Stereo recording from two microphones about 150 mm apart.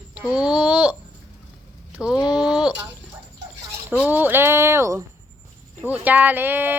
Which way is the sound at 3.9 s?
10° right (ahead or behind).